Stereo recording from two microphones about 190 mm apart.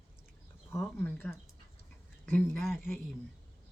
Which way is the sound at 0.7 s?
10° left (ahead or behind).